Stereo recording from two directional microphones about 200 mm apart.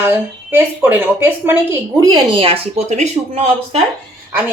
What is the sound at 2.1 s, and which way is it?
Speech, 25° right (ahead or behind).